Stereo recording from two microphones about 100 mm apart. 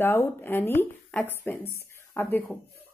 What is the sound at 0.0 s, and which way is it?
A woman's voice, 20° left (ahead or behind).